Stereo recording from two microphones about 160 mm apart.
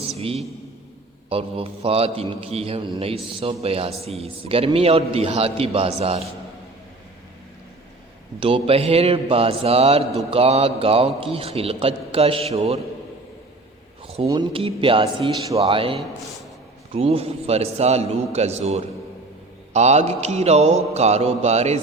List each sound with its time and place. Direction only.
1.3 s a man's voice: 35° right (ahead or behind)
8.4 s a man's voice: 35° right (ahead or behind)
14.3 s a man's voice: 30° right (ahead or behind)
16.0 s a man's voice: centre (ahead or behind)
16.9 s a man's voice: 40° right (ahead or behind)
19.7 s mantra: 45° right (ahead or behind)